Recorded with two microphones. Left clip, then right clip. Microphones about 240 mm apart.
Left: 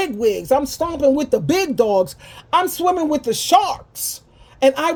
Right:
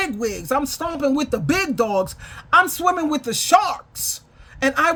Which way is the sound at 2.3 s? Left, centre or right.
Right.